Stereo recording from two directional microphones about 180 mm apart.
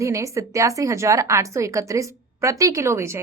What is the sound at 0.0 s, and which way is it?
A woman's voice, 15° right (ahead or behind).